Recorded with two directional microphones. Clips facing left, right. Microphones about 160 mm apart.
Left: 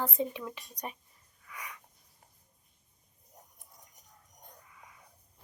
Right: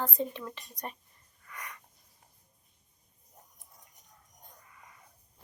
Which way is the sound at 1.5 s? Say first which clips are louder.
Even; 5° left (ahead or behind).